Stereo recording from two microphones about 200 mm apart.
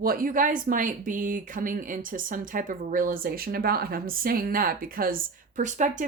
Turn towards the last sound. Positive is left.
turn(degrees=-40)  # may be behind; listen again after turning